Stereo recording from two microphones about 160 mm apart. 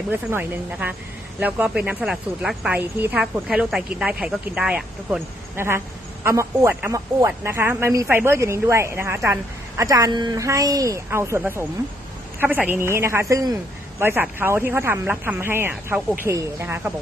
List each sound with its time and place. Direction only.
0.1 s a woman's voice: 15° right (ahead or behind)